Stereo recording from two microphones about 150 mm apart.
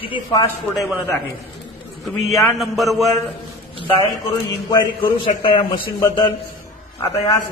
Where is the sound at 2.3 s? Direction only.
Centre (ahead or behind).